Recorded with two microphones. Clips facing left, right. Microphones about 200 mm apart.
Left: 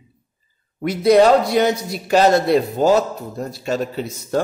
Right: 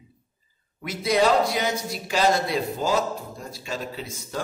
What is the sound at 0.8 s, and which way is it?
A woman's voice, 65° left (ahead or behind).